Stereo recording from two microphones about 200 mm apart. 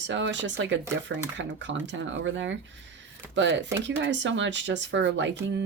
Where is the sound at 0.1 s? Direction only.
65° right (ahead or behind).